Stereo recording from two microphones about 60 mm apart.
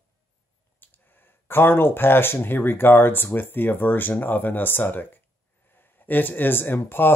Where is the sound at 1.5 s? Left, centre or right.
Left.